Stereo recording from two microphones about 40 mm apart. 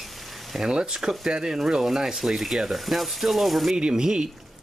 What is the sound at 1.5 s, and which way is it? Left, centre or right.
Ratchet, centre.